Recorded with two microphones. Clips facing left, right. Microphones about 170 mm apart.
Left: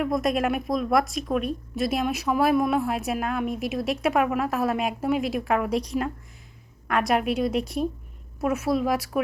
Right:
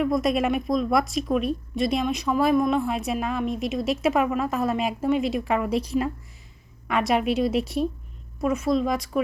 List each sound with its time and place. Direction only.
0.0 s speech: centre (ahead or behind)